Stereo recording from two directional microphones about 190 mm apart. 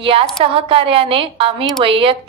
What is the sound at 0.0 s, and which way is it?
A woman's voice, 30° right (ahead or behind).